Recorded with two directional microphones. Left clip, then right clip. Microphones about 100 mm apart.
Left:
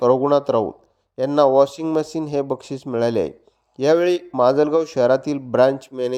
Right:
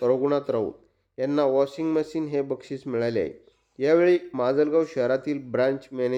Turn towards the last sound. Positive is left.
turn(degrees=40)  # may be behind; listen again after turning